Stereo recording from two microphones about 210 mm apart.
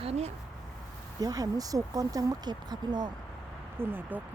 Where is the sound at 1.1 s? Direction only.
15° right (ahead or behind).